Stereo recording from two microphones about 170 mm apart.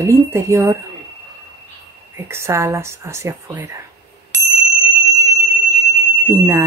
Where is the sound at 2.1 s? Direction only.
15° right (ahead or behind).